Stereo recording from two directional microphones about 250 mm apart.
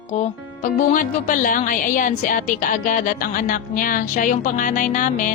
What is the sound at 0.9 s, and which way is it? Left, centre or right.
A woman's voice, left.